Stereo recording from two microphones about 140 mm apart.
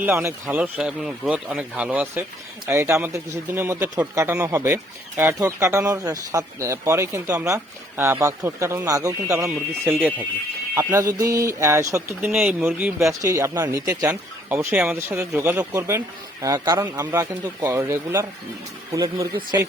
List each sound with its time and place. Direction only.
0.0 s speech: 15° right (ahead or behind)
12.3 s speech: 5° right (ahead or behind)
13.0 s speech: 20° right (ahead or behind)
14.5 s speech: 15° right (ahead or behind)